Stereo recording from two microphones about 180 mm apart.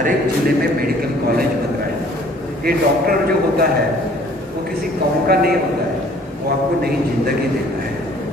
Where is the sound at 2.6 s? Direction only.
55° right (ahead or behind).